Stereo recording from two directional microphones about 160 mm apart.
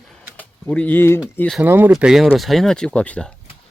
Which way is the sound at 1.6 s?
10° right (ahead or behind).